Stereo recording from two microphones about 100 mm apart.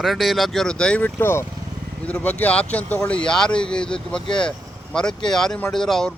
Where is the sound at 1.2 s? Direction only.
25° left (ahead or behind).